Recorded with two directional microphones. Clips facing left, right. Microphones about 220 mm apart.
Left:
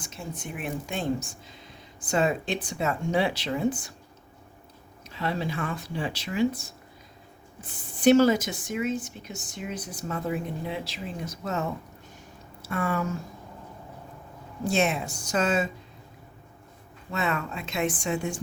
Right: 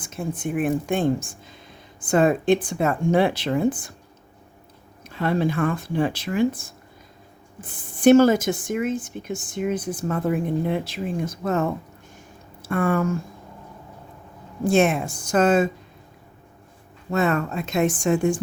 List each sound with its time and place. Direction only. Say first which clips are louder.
0.0 s speech: right 9 dB; 50° right (ahead or behind)
5.0 s speech: right 8 dB; 50° right (ahead or behind)
14.6 s speech: right 7 dB; 50° right (ahead or behind)
17.1 s speech: right 7 dB; 45° right (ahead or behind)